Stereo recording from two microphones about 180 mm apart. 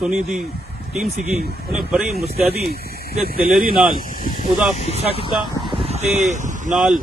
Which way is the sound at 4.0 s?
50° left (ahead or behind).